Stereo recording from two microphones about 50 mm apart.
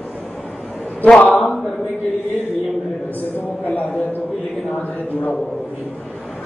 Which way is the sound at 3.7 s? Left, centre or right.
Left.